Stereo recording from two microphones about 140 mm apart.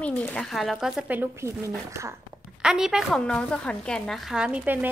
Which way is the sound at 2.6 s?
5° right (ahead or behind).